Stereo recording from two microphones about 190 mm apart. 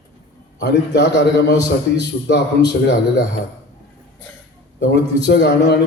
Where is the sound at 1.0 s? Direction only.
65° left (ahead or behind).